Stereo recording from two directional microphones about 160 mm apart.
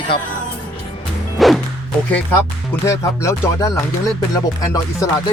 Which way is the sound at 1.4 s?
Centre (ahead or behind).